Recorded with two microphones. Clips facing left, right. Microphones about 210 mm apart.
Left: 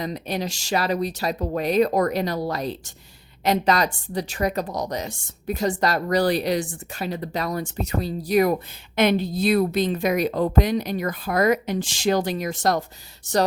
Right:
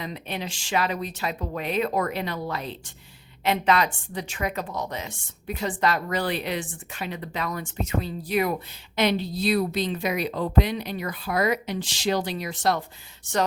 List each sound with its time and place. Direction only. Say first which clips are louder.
0.0 s a woman's voice: left 5 dB; 40° left (ahead or behind)